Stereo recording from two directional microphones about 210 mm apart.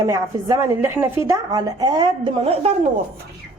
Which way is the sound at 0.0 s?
15° right (ahead or behind).